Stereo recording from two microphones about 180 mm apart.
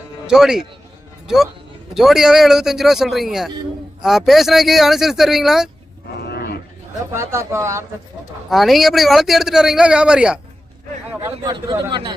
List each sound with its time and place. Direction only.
0.3 s a man's voice: 5° right (ahead or behind)
1.9 s a man's voice: centre (ahead or behind)
6.1 s cattle: 65° left (ahead or behind)
7.1 s speech: 15° right (ahead or behind)
8.4 s a man's voice: centre (ahead or behind)
11.1 s a man's voice: 20° right (ahead or behind)